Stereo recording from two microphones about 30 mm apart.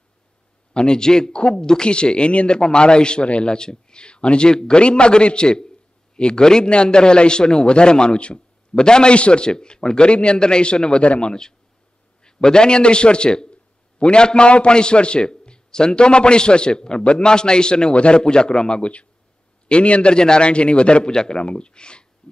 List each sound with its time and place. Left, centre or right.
0.7 s a man's voice: left
1.3 s a man's voice: left
6.4 s a man's voice: left
12.2 s a man's voice: left
18.8 s a man's voice: left
20.2 s a man's voice: left
21.1 s a man's voice: left
21.4 s a man's voice: left
22.2 s a sound: left